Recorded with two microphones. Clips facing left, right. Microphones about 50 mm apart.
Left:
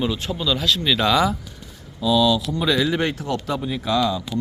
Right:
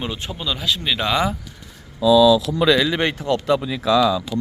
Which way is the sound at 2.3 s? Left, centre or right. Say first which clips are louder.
Right 4 dB; right.